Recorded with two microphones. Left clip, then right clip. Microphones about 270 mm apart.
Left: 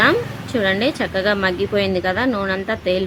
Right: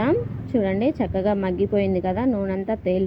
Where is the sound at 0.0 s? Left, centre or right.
Centre.